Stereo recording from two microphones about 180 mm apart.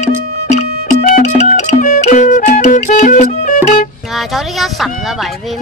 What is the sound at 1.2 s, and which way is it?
Music, 40° left (ahead or behind).